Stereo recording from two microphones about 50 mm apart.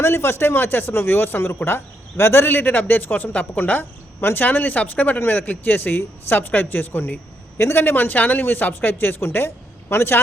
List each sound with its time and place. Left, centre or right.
0.0 s speech: left
7.6 s speech: left
7.9 s speech: left